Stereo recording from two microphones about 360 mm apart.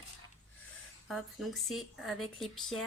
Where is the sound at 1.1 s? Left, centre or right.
Centre.